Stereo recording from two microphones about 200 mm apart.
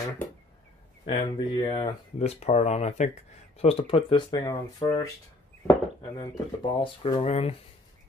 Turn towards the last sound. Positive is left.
turn(degrees=30)  # may be behind; listen again after turning